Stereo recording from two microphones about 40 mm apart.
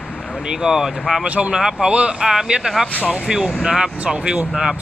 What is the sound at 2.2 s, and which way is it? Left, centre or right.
Speech, centre.